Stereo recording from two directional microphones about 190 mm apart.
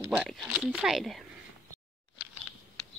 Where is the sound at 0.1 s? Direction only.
Centre (ahead or behind).